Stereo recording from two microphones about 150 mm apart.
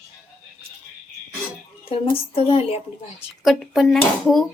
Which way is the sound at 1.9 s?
35° left (ahead or behind).